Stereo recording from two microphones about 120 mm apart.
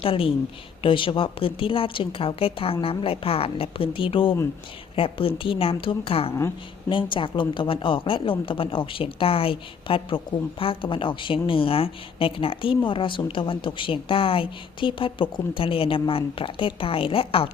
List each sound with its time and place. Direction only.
0.0 s speech: 50° left (ahead or behind)